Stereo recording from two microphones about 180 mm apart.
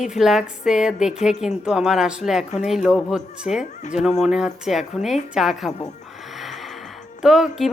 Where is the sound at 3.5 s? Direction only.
40° left (ahead or behind).